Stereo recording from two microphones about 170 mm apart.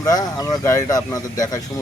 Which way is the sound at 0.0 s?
20° left (ahead or behind).